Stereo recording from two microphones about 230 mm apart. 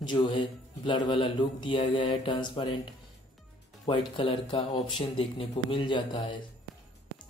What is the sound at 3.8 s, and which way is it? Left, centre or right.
Speech, left.